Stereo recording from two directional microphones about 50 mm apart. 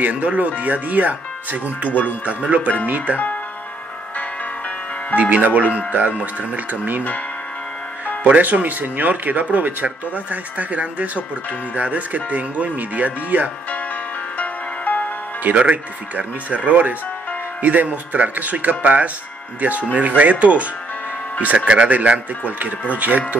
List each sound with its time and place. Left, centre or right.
0.0 s speech: right
5.1 s speech: right
8.3 s speech: right
14.4 s music: left
15.5 s speech: right